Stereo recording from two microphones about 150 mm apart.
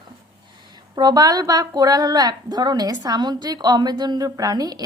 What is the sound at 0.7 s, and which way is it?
A woman's voice, 25° right (ahead or behind).